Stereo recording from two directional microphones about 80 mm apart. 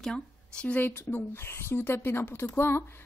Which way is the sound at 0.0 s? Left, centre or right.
Centre.